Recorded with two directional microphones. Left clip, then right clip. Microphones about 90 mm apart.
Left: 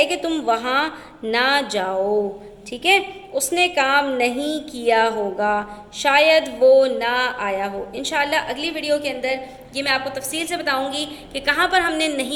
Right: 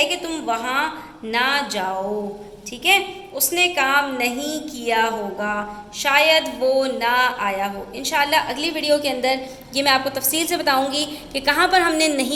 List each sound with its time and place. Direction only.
0.0 s a woman's voice: 40° left (ahead or behind); by 12.3 s 5° right (ahead or behind)